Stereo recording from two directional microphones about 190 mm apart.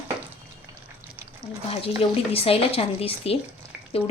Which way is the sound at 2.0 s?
30° left (ahead or behind).